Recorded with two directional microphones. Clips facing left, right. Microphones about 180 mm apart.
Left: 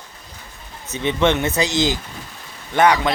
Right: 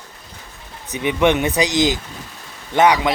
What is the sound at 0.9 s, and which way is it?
Speech, 15° right (ahead or behind).